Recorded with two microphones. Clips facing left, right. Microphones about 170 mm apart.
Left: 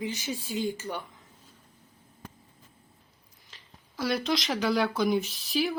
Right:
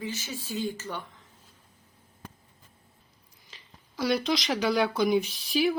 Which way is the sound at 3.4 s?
Centre (ahead or behind).